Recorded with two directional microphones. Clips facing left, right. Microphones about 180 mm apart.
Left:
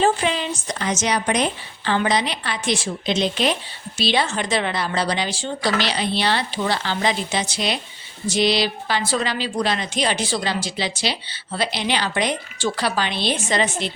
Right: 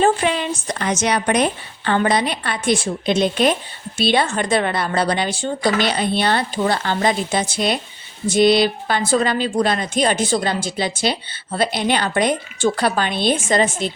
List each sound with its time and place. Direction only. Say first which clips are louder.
0.0 s a woman's voice: right 3 dB; 55° right (ahead or behind)